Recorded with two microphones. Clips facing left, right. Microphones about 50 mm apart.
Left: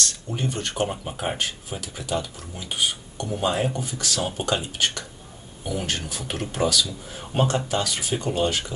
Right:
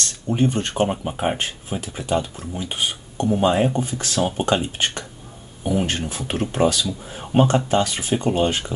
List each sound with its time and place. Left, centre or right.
0.3 s speech: right